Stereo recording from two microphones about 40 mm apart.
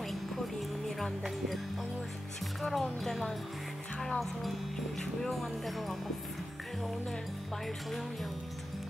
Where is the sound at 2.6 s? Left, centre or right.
Centre.